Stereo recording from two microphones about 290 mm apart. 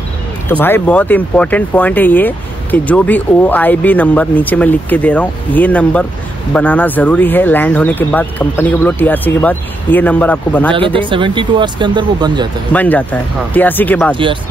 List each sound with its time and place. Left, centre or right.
0.5 s speech: centre
10.7 s speech: centre
12.7 s speech: centre
14.1 s speech: centre